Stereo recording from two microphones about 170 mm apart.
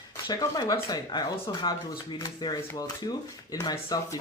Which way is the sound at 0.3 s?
20° left (ahead or behind).